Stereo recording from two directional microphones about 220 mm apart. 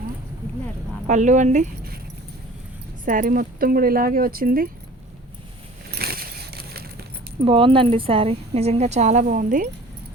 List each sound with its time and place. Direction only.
1.0 s speech: 35° right (ahead or behind)
3.0 s speech: 40° right (ahead or behind)
5.9 s a sound: 45° right (ahead or behind)
7.4 s speech: 25° right (ahead or behind)